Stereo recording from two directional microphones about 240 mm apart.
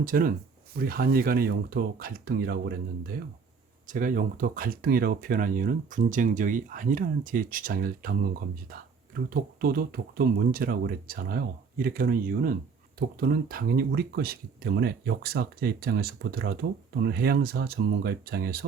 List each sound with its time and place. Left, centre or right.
0.0 s speech: right